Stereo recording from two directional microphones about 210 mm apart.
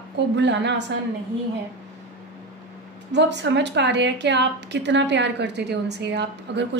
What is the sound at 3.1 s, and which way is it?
A woman's voice, 55° right (ahead or behind).